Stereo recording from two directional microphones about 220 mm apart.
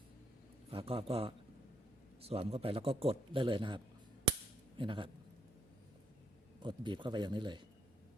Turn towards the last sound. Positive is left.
turn(degrees=-20)  # may be behind; listen again after turning